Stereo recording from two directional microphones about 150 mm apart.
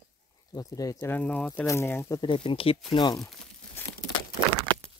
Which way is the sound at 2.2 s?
35° left (ahead or behind).